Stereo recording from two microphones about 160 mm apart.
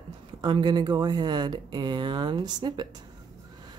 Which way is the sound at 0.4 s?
30° right (ahead or behind).